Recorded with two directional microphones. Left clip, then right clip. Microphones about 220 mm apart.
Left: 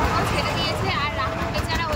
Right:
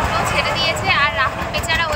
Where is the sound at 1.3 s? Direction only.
40° right (ahead or behind).